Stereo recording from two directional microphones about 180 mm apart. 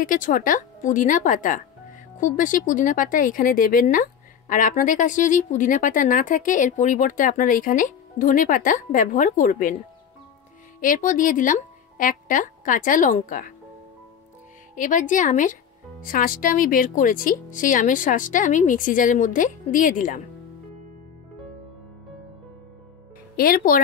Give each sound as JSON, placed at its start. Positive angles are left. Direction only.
{"t": 0.0, "sound": "speech", "side_deg": 50}
{"t": 10.8, "sound": "speech", "side_deg": 45}
{"t": 14.8, "sound": "speech", "side_deg": 45}
{"t": 23.3, "sound": "speech", "side_deg": 55}